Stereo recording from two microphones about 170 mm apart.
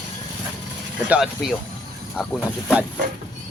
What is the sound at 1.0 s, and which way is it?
Speech, 5° right (ahead or behind).